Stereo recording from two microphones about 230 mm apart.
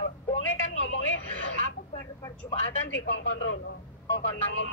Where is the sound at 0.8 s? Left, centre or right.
Left.